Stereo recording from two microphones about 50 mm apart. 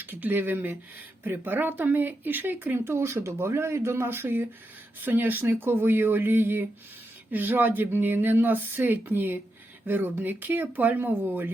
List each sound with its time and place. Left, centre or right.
0.0 s speech: right
4.9 s speech: right
11.0 s speech: right